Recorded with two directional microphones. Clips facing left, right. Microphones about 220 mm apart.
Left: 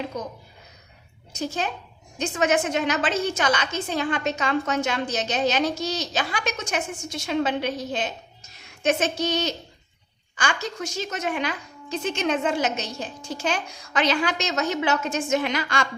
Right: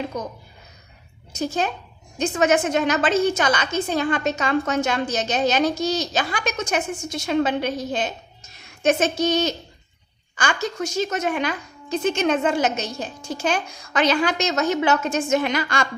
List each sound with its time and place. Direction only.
1.4 s a woman's voice: 45° right (ahead or behind)